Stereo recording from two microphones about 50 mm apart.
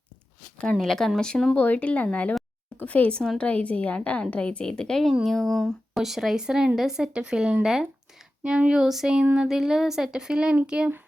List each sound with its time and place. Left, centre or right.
0.7 s speech: centre
1.5 s a woman's voice: left; by 5.0 s centre
5.2 s a woman's voice: centre
8.8 s a woman's voice: centre